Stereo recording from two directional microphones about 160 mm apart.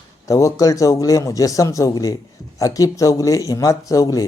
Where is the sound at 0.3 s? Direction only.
20° left (ahead or behind).